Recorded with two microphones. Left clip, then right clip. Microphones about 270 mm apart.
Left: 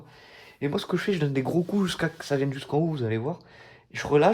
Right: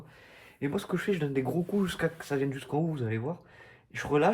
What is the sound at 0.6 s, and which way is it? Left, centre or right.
Speech, left.